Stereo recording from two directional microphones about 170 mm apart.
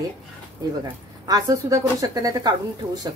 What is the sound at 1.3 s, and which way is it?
A woman's voice, 20° right (ahead or behind).